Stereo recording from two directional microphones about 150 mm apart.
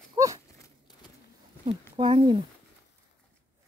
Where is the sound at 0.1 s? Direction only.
20° right (ahead or behind).